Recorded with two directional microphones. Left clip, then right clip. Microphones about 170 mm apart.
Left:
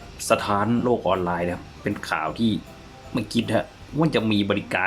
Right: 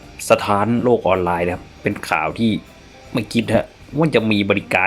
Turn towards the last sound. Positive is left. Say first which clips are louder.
# right 6 dB
turn(degrees=-25)  # may be behind; listen again after turning